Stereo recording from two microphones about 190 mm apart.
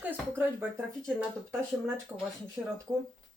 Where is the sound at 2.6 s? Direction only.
15° right (ahead or behind).